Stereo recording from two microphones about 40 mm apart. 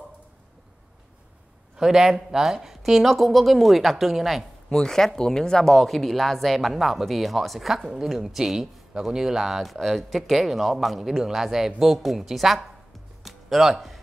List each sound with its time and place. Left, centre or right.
1.8 s speech: centre
4.6 s speech: centre
13.2 s music: centre